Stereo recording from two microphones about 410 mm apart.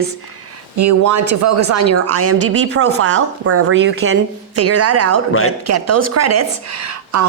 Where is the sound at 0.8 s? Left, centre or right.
Right.